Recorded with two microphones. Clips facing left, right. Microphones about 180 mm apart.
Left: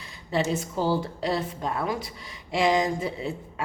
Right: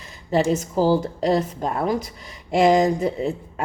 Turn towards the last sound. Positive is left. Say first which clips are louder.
# right 7 dB
turn(degrees=-45)  # may be behind; listen again after turning